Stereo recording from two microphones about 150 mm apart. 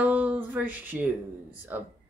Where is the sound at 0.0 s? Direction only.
10° right (ahead or behind).